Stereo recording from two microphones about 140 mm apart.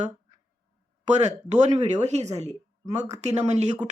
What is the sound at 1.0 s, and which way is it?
Speech, 55° right (ahead or behind).